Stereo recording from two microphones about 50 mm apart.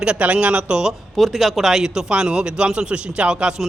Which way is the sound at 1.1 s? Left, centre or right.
Centre.